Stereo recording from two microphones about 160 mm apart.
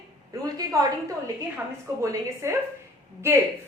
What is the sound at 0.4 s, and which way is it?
A woman's voice, 20° right (ahead or behind).